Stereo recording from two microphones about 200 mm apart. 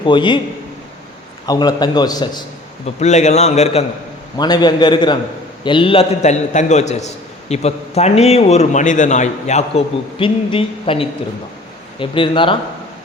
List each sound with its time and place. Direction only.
0.0 s a man's voice: 25° left (ahead or behind)
1.5 s a man's voice: 20° left (ahead or behind)
2.8 s a man's voice: 35° left (ahead or behind)
4.4 s a man's voice: 20° left (ahead or behind)